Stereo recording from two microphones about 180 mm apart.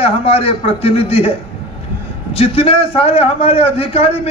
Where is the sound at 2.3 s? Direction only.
35° left (ahead or behind).